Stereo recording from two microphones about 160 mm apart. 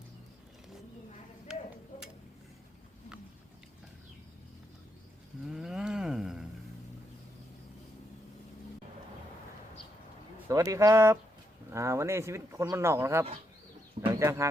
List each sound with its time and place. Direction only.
1.5 s tick-tock: 5° right (ahead or behind)
5.5 s cattle: 5° right (ahead or behind)
10.5 s speech: 20° right (ahead or behind)